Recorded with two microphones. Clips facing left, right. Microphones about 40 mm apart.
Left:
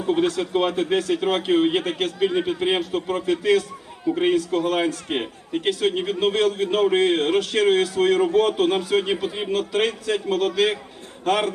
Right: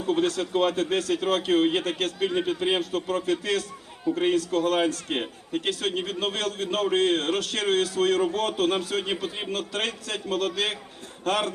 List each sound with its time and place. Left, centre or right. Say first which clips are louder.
0.0 s a man's voice: left 3 dB; left